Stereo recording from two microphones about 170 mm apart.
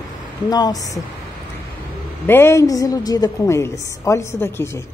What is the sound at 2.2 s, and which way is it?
A woman's voice, 15° left (ahead or behind).